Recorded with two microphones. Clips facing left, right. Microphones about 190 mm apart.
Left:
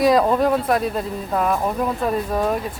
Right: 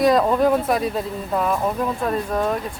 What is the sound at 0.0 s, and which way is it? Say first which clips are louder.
Speech: even; centre (ahead or behind).